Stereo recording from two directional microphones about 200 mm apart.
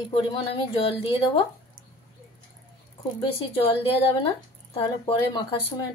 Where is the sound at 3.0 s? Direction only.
25° left (ahead or behind).